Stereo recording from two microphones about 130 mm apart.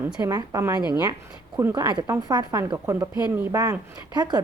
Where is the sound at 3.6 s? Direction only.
30° right (ahead or behind).